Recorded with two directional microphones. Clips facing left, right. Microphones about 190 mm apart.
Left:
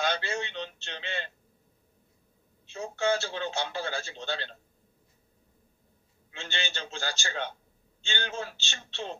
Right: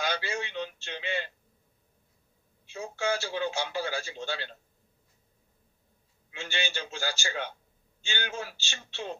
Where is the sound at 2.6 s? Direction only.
10° right (ahead or behind).